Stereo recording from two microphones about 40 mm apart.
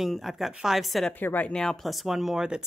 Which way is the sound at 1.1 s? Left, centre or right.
Left.